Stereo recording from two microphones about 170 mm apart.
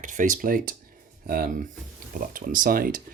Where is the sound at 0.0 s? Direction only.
50° right (ahead or behind).